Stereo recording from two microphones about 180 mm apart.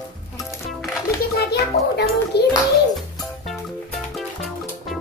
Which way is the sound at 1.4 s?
65° left (ahead or behind).